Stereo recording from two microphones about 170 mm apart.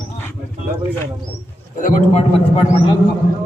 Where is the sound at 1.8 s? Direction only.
50° left (ahead or behind).